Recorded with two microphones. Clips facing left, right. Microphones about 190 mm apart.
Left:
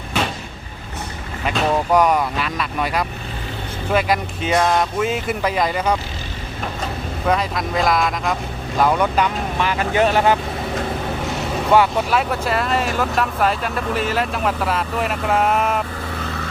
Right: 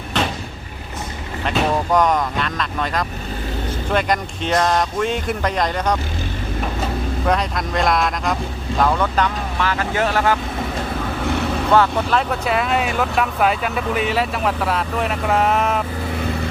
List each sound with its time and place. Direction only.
1.5 s speech: 5° left (ahead or behind)
7.3 s speech: centre (ahead or behind)
8.8 s speech: 10° left (ahead or behind)
11.7 s speech: 10° left (ahead or behind)